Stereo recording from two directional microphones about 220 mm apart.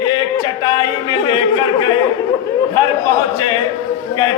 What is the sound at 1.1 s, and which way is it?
Speech, 20° left (ahead or behind).